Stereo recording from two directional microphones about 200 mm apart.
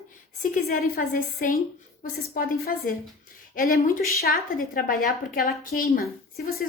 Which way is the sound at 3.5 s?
45° left (ahead or behind).